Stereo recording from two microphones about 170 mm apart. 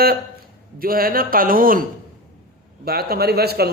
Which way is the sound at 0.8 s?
60° right (ahead or behind).